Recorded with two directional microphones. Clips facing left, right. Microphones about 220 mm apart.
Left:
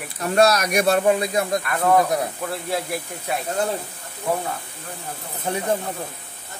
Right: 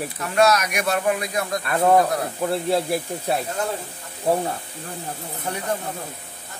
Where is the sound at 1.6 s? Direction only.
30° right (ahead or behind).